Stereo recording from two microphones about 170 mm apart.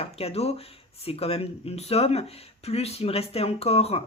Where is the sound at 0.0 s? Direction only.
35° left (ahead or behind).